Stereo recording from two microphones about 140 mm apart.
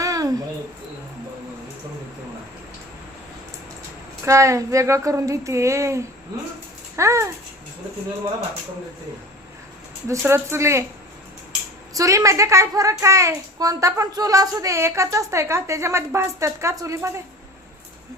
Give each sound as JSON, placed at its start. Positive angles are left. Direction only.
{"t": 0.0, "sound": "a sound", "side_deg": -25}
{"t": 4.3, "sound": "a woman's voice", "side_deg": -20}
{"t": 10.1, "sound": "a woman's voice", "side_deg": -20}
{"t": 11.9, "sound": "a woman's voice", "side_deg": -25}